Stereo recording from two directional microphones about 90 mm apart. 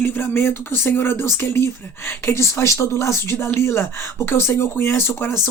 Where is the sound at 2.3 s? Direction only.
30° left (ahead or behind).